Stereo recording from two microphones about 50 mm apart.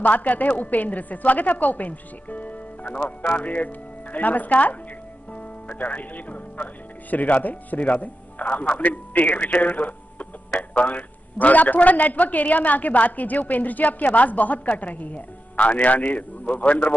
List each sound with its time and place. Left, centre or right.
0.0 s speech: left